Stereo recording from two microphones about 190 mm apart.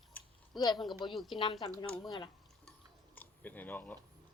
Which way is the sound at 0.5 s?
20° left (ahead or behind).